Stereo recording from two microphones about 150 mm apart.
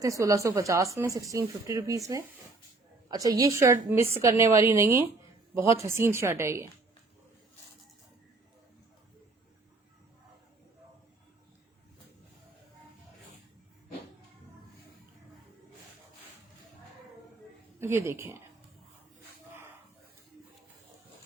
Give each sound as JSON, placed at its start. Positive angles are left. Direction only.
{"t": 0.0, "sound": "a woman's voice", "side_deg": -20}
{"t": 17.7, "sound": "speech", "side_deg": -15}